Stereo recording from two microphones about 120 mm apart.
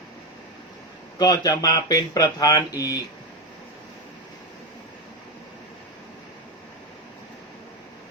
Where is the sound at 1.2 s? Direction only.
30° left (ahead or behind).